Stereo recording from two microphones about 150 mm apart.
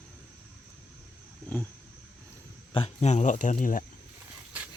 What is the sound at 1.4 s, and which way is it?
Roaring cats, 15° left (ahead or behind).